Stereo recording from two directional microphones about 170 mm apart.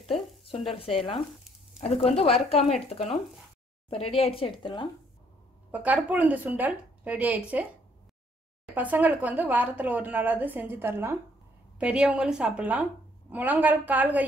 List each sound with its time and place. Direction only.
1.8 s a woman's voice: 35° left (ahead or behind)
5.7 s speech: 10° right (ahead or behind)
8.7 s a woman's voice: 10° right (ahead or behind)